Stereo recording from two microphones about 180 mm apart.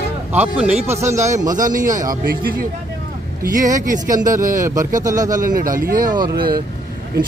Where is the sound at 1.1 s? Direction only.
40° right (ahead or behind).